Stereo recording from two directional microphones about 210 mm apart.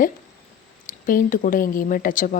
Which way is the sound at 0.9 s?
40° left (ahead or behind).